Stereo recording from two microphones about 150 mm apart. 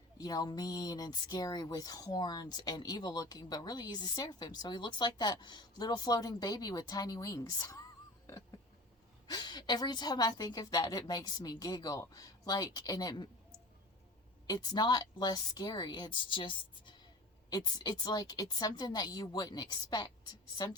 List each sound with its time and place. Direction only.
0.2 s speech: 25° left (ahead or behind)
9.3 s speech: 30° left (ahead or behind)
14.4 s speech: 25° left (ahead or behind)